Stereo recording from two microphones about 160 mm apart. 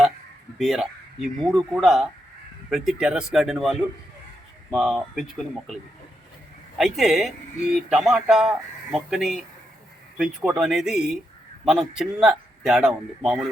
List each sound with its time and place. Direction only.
0.6 s speech: centre (ahead or behind)
6.7 s speech: centre (ahead or behind)